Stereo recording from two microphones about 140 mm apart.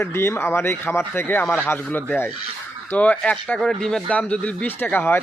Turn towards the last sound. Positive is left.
turn(degrees=15)  # may be behind; listen again after turning